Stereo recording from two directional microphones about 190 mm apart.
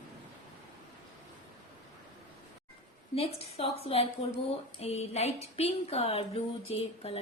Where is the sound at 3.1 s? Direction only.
30° left (ahead or behind).